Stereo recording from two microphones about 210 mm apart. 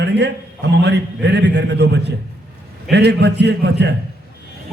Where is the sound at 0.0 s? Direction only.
55° right (ahead or behind).